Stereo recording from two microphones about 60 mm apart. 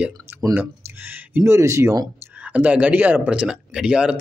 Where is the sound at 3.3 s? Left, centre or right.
Centre.